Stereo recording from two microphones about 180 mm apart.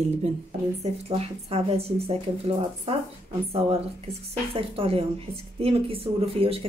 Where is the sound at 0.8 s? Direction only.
35° right (ahead or behind).